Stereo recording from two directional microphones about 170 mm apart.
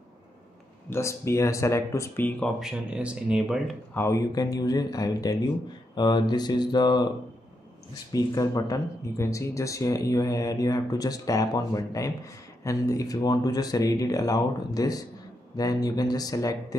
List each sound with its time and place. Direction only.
0.8 s speech: 15° left (ahead or behind)
2.6 s speech: 5° right (ahead or behind)
3.9 s speech: 15° left (ahead or behind)